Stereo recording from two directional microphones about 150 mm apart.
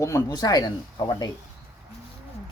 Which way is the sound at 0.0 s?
20° left (ahead or behind).